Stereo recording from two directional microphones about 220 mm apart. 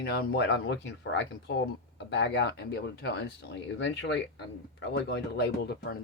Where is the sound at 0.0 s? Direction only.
45° left (ahead or behind).